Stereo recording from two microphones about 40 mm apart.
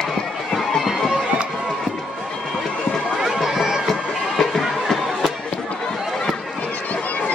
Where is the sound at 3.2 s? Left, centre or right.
Centre.